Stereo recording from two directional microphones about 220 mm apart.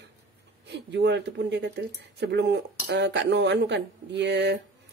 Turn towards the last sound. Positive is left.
turn(degrees=-50)  # may be behind; listen again after turning